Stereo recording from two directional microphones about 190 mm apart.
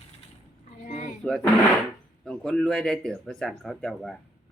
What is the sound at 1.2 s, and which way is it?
Speech, 5° left (ahead or behind).